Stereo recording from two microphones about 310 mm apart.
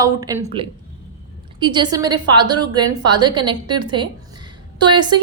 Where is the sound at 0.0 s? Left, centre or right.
Centre.